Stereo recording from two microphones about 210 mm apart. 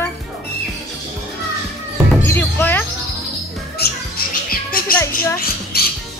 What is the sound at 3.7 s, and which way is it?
Music, 45° left (ahead or behind).